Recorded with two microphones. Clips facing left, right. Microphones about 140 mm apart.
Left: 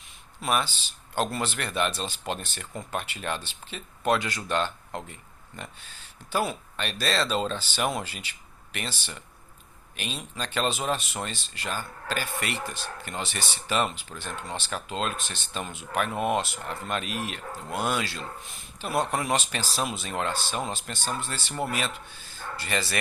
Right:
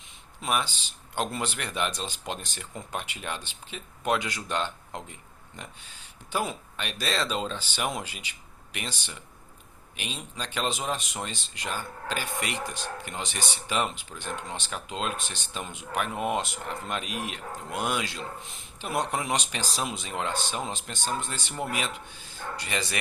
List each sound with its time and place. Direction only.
0.5 s speech: 15° right (ahead or behind)
6.7 s a man's voice: 15° right (ahead or behind)
16.1 s speech: 20° left (ahead or behind)
16.4 s speech: 20° right (ahead or behind)